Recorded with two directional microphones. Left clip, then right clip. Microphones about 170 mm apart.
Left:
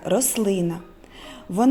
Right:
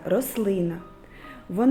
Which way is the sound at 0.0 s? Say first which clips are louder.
Left 2 dB; 35° left (ahead or behind).